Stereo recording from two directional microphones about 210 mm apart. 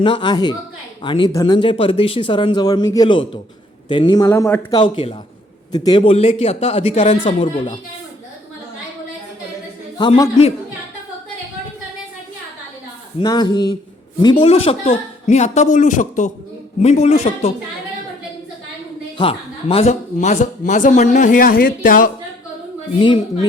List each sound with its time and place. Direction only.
0.0 s a man's voice: 20° left (ahead or behind)
10.0 s speech: 25° left (ahead or behind)
13.1 s speech: 20° left (ahead or behind)
19.1 s speech: 25° left (ahead or behind); by 22.1 s 40° left (ahead or behind)
23.0 s speech: 25° left (ahead or behind)